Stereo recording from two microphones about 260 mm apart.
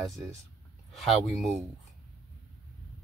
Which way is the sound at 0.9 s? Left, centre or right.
Centre.